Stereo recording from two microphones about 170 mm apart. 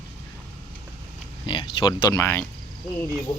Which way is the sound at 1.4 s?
30° left (ahead or behind).